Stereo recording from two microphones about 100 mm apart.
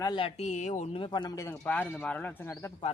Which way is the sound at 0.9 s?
50° left (ahead or behind).